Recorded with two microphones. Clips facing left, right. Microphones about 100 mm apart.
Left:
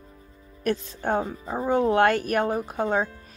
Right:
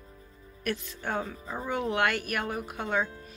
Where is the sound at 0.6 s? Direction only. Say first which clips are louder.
Left 7 dB; 35° left (ahead or behind).